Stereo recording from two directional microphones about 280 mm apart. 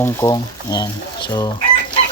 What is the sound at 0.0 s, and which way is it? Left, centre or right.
Speech, centre.